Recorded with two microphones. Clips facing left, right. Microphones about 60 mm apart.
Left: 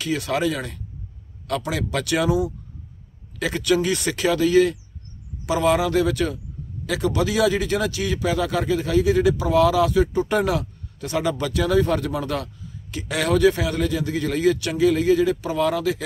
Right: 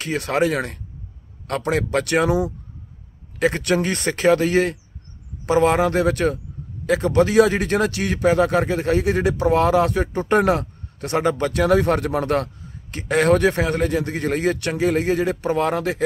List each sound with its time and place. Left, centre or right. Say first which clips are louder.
0.0 s speech: right 2 dB; right
5.5 s speech: right 3 dB; right